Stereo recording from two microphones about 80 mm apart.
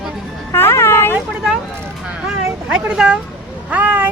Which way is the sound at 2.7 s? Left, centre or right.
Centre.